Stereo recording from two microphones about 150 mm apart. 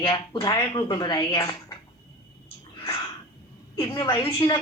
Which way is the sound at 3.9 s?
35° left (ahead or behind).